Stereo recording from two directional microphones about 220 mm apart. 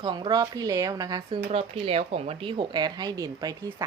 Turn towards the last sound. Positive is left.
turn(degrees=-15)  # may be behind; listen again after turning